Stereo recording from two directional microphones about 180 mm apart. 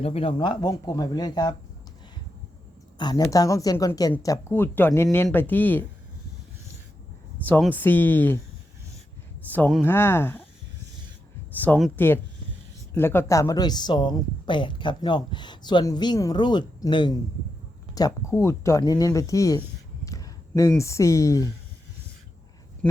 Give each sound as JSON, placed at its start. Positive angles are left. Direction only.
{"t": 0.0, "sound": "speech", "side_deg": 30}
{"t": 3.0, "sound": "speech", "side_deg": 20}
{"t": 7.6, "sound": "speech", "side_deg": 10}
{"t": 9.5, "sound": "speech", "side_deg": 5}
{"t": 11.5, "sound": "speech", "side_deg": 10}
{"t": 20.1, "sound": "a sound", "side_deg": 20}
{"t": 20.6, "sound": "speech", "side_deg": 15}
{"t": 22.8, "sound": "speech", "side_deg": 5}